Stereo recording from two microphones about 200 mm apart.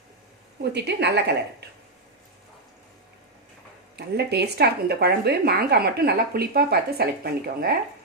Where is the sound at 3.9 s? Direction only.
55° right (ahead or behind).